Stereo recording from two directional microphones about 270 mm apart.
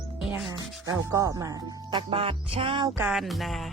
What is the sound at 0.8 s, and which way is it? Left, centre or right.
Speech, centre.